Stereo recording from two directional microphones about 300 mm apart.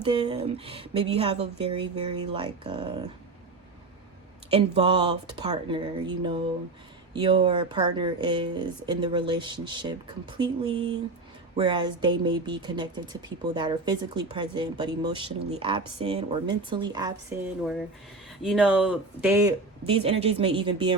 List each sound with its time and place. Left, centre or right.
0.0 s speech: centre
4.5 s speech: centre
18.4 s speech: centre